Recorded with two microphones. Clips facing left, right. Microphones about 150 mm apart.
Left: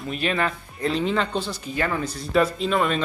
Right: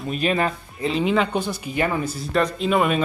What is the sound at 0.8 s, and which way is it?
Speech, 5° right (ahead or behind).